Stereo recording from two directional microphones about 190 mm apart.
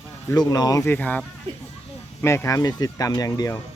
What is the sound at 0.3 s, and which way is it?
Speech, 20° left (ahead or behind).